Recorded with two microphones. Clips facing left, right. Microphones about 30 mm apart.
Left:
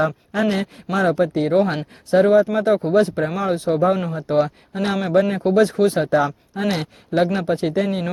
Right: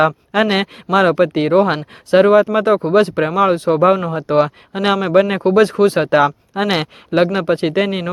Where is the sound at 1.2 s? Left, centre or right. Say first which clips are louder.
Right 4 dB; right.